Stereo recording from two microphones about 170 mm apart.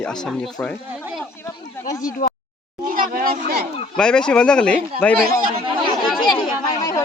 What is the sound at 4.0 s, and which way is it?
Speech, 5° left (ahead or behind).